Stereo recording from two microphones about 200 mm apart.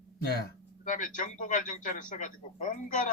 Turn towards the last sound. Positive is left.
turn(degrees=40)  # may be behind; listen again after turning